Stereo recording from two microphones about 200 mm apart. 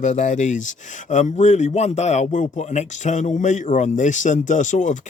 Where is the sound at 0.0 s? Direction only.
35° left (ahead or behind).